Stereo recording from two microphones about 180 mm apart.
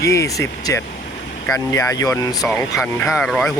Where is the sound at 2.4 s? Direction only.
Centre (ahead or behind).